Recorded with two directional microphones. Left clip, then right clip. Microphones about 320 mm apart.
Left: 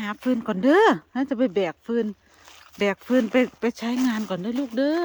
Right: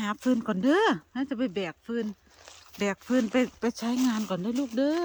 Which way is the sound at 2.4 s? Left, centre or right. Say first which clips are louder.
Left 2 dB; centre.